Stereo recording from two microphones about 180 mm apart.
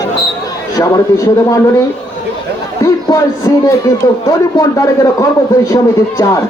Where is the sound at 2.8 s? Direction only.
20° left (ahead or behind).